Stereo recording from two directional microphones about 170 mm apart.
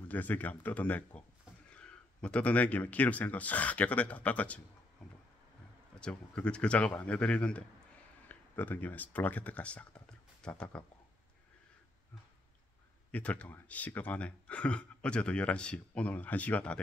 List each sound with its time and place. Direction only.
0.1 s speech: 10° left (ahead or behind)
5.9 s speech: 5° left (ahead or behind)
13.1 s speech: 10° left (ahead or behind)